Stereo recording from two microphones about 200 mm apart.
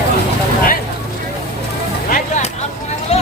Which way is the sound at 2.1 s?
35° left (ahead or behind).